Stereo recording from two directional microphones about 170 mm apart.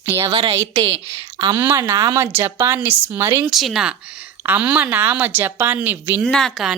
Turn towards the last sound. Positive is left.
turn(degrees=0)  # may be behind; listen again after turning